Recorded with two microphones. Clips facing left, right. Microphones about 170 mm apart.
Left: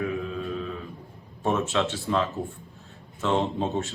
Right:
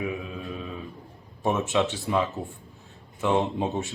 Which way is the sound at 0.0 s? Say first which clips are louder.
Left 3 dB; 15° right (ahead or behind).